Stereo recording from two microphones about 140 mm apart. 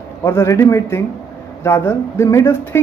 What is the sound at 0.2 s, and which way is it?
Speech, 20° left (ahead or behind).